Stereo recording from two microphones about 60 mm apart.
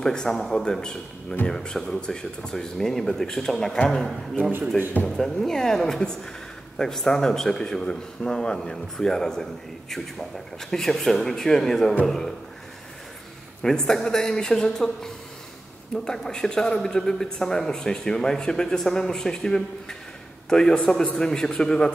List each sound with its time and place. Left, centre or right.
0.0 s a man's voice: centre
4.4 s a man's voice: right
5.0 s a man's voice: centre
13.6 s a man's voice: centre
16.1 s a man's voice: centre